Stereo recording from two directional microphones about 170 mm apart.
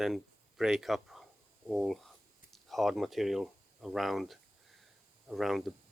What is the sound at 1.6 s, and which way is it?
Speech, centre (ahead or behind).